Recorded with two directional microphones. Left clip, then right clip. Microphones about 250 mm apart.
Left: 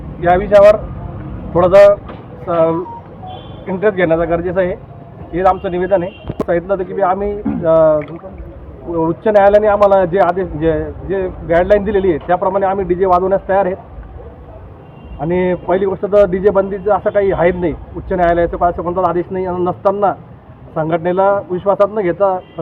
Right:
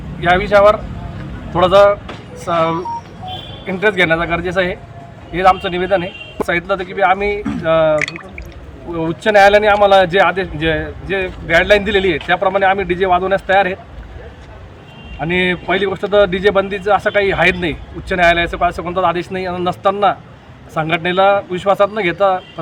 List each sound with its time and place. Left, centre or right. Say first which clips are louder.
0.2 s a man's voice: left 2 dB; right
9.0 s a man's voice: even; right
15.2 s a man's voice: even; right